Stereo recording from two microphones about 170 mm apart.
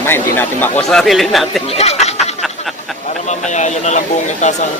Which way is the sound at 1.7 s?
40° left (ahead or behind).